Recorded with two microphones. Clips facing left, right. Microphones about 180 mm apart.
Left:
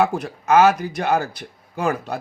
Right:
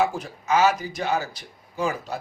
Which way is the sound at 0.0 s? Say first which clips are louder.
Left 4 dB; 60° left (ahead or behind).